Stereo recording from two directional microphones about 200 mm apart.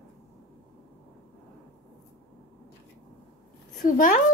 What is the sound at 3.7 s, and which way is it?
Speech, 45° left (ahead or behind).